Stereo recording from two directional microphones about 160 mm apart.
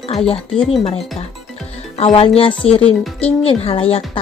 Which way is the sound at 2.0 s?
40° left (ahead or behind).